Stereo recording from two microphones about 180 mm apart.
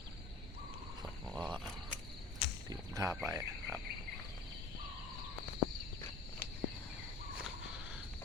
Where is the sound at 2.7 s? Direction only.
20° right (ahead or behind).